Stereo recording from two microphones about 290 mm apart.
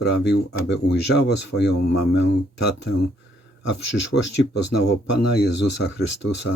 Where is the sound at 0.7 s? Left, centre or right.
Left.